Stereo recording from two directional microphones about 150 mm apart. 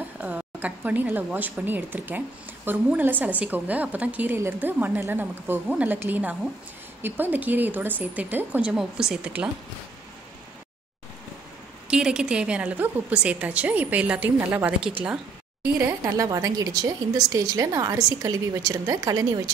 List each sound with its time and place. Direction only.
0.2 s a woman's voice: 10° right (ahead or behind)
11.9 s a woman's voice: 5° right (ahead or behind)
16.0 s a woman's voice: 25° right (ahead or behind)